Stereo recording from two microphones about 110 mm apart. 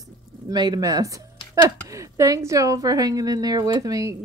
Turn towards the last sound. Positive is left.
turn(degrees=-30)  # may be behind; listen again after turning